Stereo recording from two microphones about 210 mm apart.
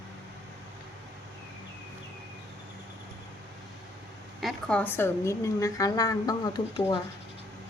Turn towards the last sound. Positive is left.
turn(degrees=20)  # may be behind; listen again after turning